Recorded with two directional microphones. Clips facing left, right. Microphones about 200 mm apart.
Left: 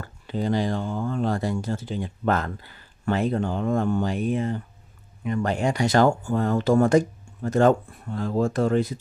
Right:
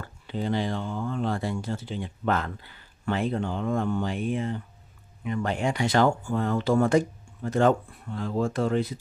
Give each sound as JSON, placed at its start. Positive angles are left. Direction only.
{"t": 0.0, "sound": "speech", "side_deg": 40}